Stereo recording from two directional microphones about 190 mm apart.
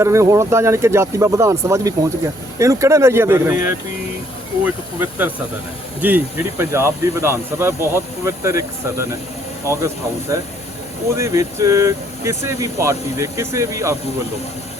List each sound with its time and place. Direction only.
0.0 s speech: 15° right (ahead or behind)